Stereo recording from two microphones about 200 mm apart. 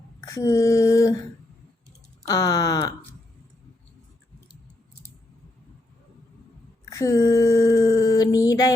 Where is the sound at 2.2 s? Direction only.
20° left (ahead or behind).